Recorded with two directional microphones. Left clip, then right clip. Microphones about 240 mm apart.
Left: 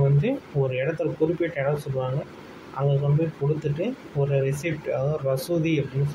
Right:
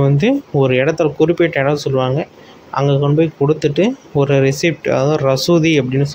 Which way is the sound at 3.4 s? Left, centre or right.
Right.